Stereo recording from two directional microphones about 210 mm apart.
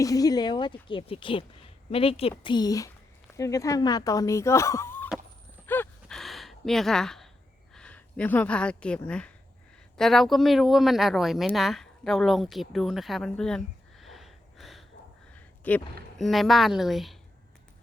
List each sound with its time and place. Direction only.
0.0 s speech: 15° left (ahead or behind)
5.6 s a sound: 10° left (ahead or behind)
7.8 s speech: 5° left (ahead or behind)
14.0 s snort: centre (ahead or behind)
15.6 s speech: 10° left (ahead or behind)